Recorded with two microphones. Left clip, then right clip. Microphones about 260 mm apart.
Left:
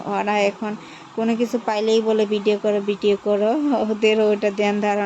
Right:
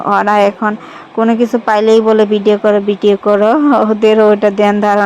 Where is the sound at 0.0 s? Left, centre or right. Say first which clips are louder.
Right 11 dB; centre.